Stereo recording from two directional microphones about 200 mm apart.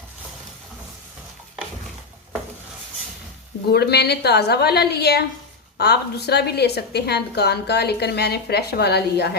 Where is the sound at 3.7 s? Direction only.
55° left (ahead or behind).